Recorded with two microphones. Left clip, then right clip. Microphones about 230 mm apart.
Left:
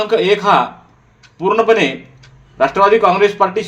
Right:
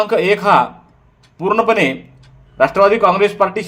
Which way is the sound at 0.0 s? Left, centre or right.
Right.